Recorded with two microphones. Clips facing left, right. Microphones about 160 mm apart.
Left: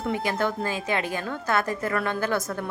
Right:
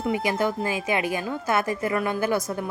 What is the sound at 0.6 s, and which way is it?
A woman's voice, 15° right (ahead or behind).